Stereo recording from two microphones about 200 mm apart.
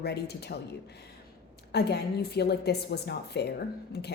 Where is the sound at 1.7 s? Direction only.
55° left (ahead or behind).